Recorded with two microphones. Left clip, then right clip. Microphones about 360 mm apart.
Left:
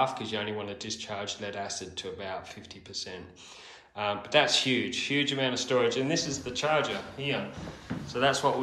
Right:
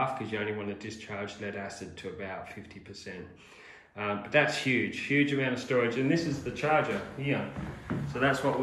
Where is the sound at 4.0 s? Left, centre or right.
Centre.